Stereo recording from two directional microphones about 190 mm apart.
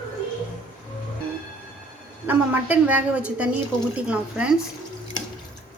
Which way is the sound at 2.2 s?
10° right (ahead or behind).